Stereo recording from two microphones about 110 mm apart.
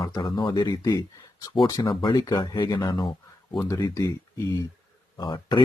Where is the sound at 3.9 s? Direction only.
25° left (ahead or behind).